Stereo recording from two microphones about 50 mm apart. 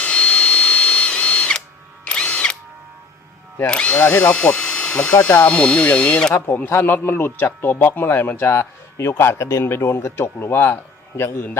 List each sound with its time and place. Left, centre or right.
0.0 s drill: left
3.7 s speech: left
6.3 s a man's voice: left